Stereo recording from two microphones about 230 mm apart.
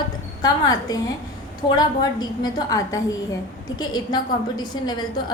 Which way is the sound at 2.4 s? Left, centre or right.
Centre.